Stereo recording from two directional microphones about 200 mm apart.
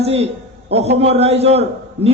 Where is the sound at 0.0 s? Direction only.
30° right (ahead or behind).